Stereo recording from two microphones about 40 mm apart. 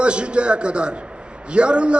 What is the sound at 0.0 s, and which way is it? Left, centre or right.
A man's voice, right.